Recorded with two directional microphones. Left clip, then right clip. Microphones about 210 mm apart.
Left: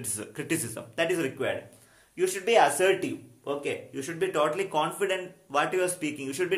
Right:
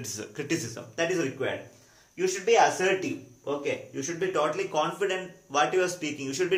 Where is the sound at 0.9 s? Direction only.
50° left (ahead or behind).